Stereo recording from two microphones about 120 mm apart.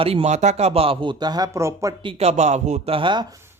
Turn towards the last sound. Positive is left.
turn(degrees=-40)  # may be behind; listen again after turning